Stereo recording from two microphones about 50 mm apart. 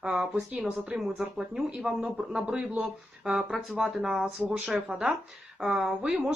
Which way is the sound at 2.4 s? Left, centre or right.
Right.